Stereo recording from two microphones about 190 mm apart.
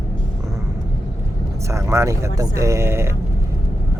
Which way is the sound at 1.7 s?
15° right (ahead or behind).